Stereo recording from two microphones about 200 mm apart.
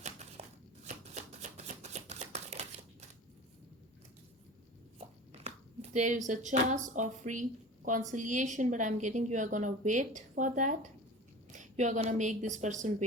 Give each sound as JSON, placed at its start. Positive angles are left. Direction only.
{"t": 0.4, "sound": "chopping", "side_deg": -35}
{"t": 0.9, "sound": "shuffling cards", "side_deg": -35}
{"t": 4.9, "sound": "a sound", "side_deg": -30}
{"t": 7.9, "sound": "a woman's voice", "side_deg": -40}